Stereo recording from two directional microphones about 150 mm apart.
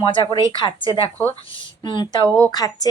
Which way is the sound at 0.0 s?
35° left (ahead or behind).